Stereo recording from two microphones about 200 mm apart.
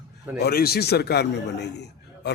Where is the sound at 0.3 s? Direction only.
50° left (ahead or behind).